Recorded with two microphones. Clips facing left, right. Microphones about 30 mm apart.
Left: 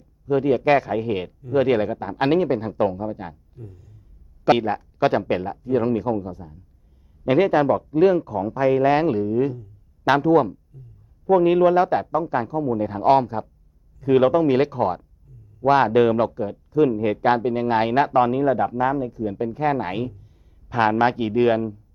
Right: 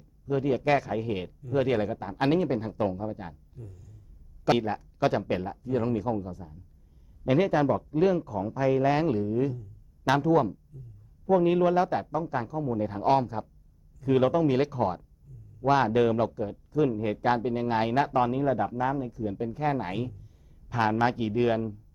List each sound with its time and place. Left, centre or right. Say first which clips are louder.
0.3 s speech: left 7 dB; left